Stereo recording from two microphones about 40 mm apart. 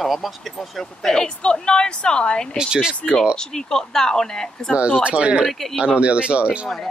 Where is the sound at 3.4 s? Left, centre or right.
Centre.